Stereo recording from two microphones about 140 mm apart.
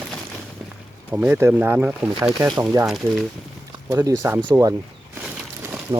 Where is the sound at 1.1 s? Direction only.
5° right (ahead or behind).